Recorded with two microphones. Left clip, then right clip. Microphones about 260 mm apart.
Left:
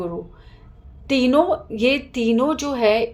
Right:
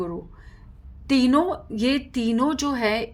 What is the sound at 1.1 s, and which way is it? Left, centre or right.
A woman's voice, right.